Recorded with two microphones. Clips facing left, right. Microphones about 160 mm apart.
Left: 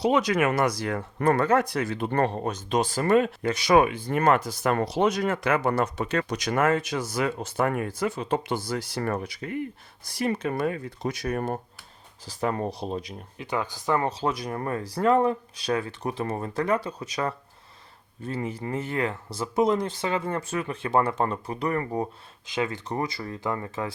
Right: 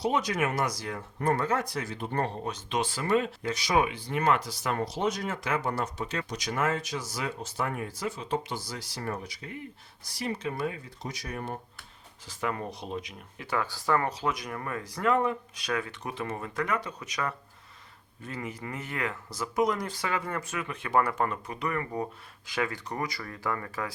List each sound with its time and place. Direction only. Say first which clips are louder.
0.0 s speech: left 6 dB; 75° left (ahead or behind)
2.5 s speech: left 5 dB; 45° left (ahead or behind)
12.2 s speech: left 5 dB; 35° left (ahead or behind)
13.4 s speech: left 2 dB; 20° left (ahead or behind); by 22.0 s 35° left (ahead or behind)
22.4 s speech: left 3 dB; 20° left (ahead or behind)